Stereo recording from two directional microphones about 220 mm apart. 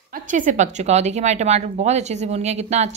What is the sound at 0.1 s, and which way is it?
A woman's voice, 35° right (ahead or behind).